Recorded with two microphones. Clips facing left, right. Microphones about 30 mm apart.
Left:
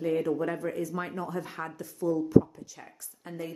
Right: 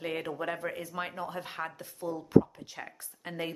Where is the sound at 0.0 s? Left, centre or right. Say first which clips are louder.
Left 7 dB; right.